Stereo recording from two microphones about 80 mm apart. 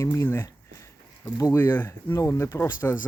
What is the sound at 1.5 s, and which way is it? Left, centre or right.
Speech, left.